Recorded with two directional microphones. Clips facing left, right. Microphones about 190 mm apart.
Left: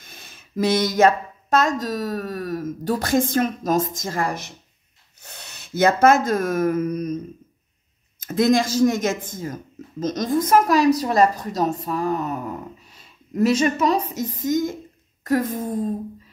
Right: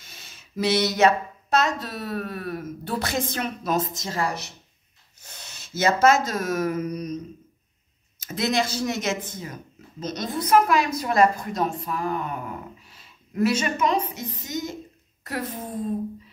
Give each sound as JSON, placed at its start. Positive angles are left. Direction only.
{"t": 0.0, "sound": "speech", "side_deg": 55}
{"t": 5.2, "sound": "speech", "side_deg": 65}
{"t": 8.2, "sound": "a woman's voice", "side_deg": 50}